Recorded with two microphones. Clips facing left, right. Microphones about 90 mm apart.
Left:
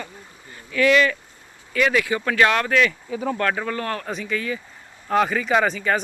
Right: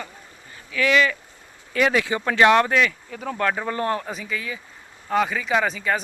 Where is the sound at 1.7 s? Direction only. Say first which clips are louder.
Even; 25° right (ahead or behind).